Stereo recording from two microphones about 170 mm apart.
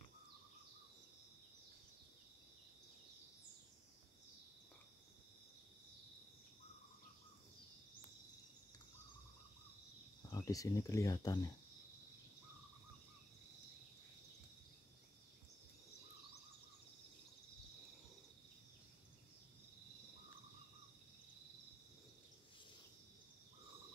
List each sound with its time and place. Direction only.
10.2 s speech: 20° left (ahead or behind)